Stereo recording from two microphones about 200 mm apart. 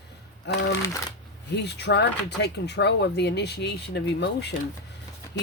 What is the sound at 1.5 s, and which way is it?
Speech, 60° left (ahead or behind).